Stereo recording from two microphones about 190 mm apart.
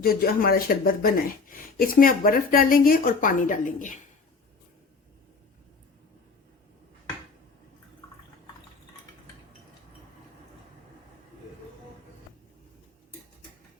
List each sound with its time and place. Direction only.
0.0 s speech: 50° left (ahead or behind)